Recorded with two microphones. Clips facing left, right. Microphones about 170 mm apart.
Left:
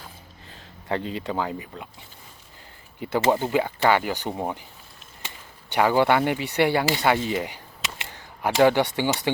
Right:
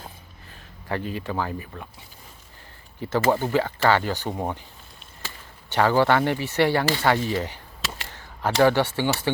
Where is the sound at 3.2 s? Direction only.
20° left (ahead or behind).